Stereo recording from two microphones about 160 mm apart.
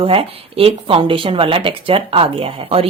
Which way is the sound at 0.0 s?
35° right (ahead or behind).